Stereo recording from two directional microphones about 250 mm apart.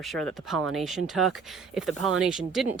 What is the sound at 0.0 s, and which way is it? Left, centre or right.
A woman's voice, centre.